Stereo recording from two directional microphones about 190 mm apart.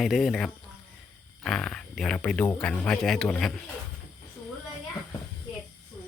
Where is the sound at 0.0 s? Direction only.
Centre (ahead or behind).